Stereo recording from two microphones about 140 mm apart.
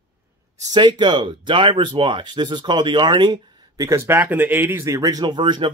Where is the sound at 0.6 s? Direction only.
30° right (ahead or behind).